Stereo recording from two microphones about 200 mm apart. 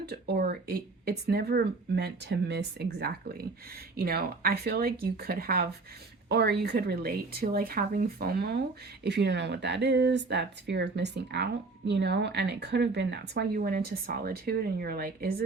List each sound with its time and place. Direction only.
0.0 s speech: 55° right (ahead or behind)